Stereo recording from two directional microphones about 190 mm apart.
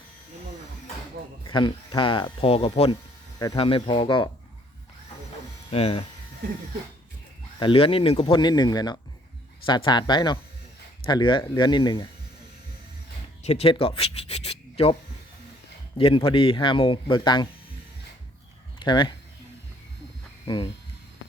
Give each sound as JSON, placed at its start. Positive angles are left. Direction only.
{"t": 1.5, "sound": "speech", "side_deg": 25}
{"t": 3.3, "sound": "speech", "side_deg": 20}
{"t": 5.7, "sound": "speech", "side_deg": 30}
{"t": 7.6, "sound": "speech", "side_deg": 25}
{"t": 13.4, "sound": "speech", "side_deg": 35}
{"t": 16.0, "sound": "speech", "side_deg": 30}
{"t": 18.8, "sound": "speech", "side_deg": 25}
{"t": 20.4, "sound": "speech", "side_deg": 25}